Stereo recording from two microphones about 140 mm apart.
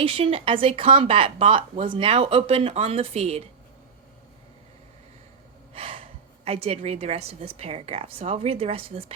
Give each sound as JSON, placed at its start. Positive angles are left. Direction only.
{"t": 0.0, "sound": "speech", "side_deg": -40}
{"t": 5.7, "sound": "speech", "side_deg": -45}